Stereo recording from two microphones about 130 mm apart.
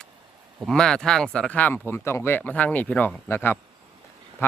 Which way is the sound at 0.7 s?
5° left (ahead or behind).